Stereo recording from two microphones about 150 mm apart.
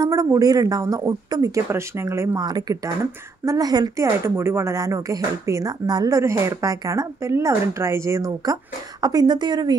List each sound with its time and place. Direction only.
0.0 s speech: 20° right (ahead or behind)